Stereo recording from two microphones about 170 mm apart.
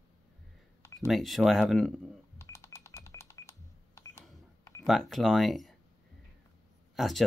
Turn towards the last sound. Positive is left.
turn(degrees=0)  # may be behind; listen again after turning